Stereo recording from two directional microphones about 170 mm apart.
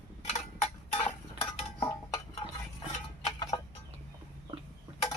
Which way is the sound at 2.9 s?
40° left (ahead or behind).